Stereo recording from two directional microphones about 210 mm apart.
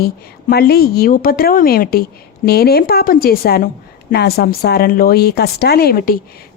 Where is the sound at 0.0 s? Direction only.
45° left (ahead or behind).